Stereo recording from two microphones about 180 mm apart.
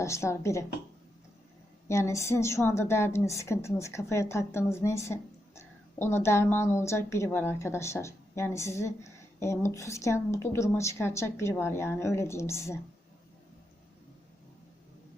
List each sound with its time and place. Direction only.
0.0 s a woman's voice: 15° left (ahead or behind)
1.9 s a woman's voice: 15° left (ahead or behind)